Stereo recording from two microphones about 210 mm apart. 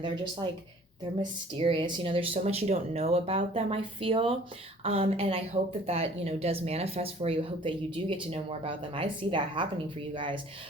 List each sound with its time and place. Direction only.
1.2 s speech: 25° right (ahead or behind)